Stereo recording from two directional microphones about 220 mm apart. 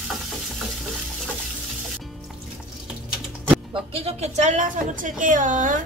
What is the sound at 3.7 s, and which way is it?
Speech, 25° right (ahead or behind).